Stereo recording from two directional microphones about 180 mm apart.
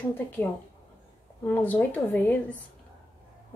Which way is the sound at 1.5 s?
10° left (ahead or behind).